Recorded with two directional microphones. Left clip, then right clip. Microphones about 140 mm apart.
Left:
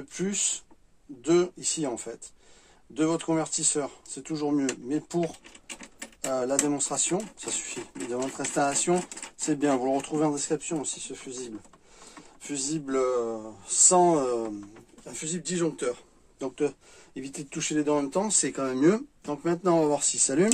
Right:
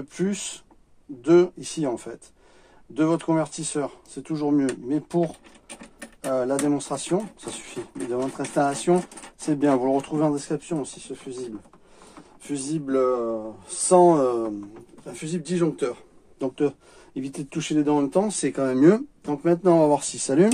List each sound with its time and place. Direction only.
0.1 s a man's voice: 30° right (ahead or behind)
6.3 s speech: 20° right (ahead or behind)
12.4 s a man's voice: 25° right (ahead or behind)